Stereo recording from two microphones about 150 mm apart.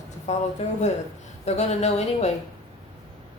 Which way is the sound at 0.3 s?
50° left (ahead or behind).